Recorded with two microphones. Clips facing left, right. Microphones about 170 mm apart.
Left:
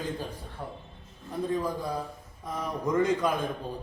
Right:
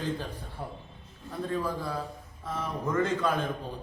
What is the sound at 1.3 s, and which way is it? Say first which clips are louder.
A man's voice: left 2 dB; 15° left (ahead or behind).